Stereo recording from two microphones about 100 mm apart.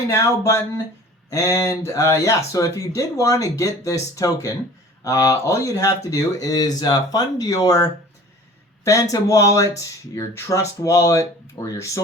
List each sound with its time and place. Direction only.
0.1 s speech: 30° left (ahead or behind)